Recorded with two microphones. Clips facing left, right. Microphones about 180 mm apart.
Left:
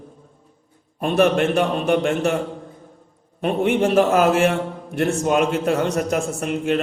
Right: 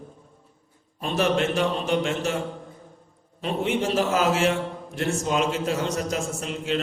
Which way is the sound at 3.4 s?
60° left (ahead or behind).